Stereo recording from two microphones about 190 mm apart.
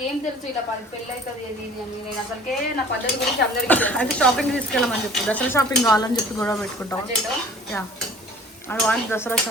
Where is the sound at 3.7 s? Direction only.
10° left (ahead or behind).